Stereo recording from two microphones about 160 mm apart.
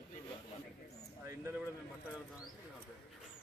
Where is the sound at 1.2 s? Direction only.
15° right (ahead or behind).